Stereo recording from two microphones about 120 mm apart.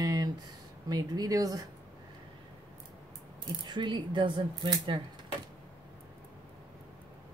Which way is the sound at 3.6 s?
40° right (ahead or behind).